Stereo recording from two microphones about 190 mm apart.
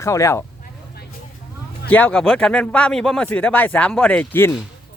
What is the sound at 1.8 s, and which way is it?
Speech, 10° left (ahead or behind).